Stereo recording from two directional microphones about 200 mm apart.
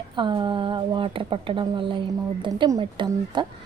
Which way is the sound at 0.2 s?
25° right (ahead or behind).